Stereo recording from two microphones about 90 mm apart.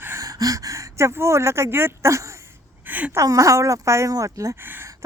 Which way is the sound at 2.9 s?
20° right (ahead or behind).